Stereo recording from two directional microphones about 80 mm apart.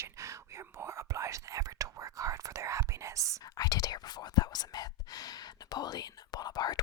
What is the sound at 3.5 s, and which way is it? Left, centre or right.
Speech, left.